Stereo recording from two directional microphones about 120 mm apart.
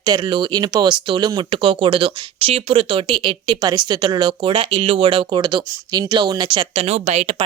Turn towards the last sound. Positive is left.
turn(degrees=-65)  # may be behind; listen again after turning